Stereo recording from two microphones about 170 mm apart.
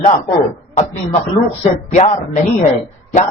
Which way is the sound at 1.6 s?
40° left (ahead or behind).